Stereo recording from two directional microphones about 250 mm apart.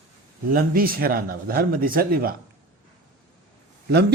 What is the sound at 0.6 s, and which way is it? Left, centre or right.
A man's voice, right.